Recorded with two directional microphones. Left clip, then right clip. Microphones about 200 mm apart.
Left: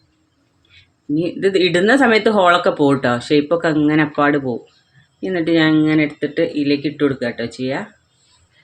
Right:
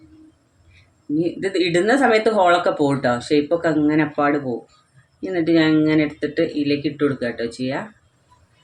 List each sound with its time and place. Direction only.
1.1 s speech: 40° left (ahead or behind)